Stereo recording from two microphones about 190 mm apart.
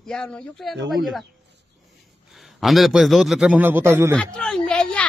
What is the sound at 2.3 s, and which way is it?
A woman's voice, centre (ahead or behind).